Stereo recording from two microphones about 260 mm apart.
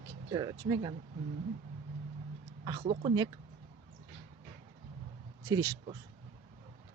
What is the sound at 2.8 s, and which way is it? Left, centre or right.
Speech, right.